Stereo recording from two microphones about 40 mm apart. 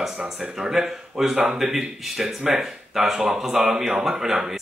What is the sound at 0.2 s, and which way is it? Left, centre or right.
Speech, centre.